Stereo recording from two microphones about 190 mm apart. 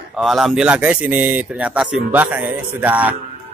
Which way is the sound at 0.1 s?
Centre (ahead or behind).